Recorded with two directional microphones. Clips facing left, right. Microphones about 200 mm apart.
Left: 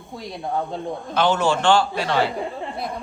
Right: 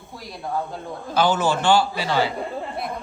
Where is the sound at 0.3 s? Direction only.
25° left (ahead or behind).